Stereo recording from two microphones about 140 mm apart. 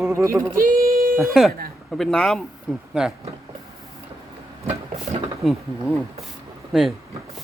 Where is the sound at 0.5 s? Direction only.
85° right.